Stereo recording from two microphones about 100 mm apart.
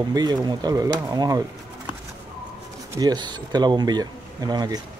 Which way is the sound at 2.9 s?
45° right (ahead or behind).